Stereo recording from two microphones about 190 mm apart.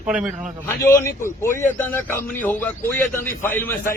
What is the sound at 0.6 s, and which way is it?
A man's voice, 15° left (ahead or behind).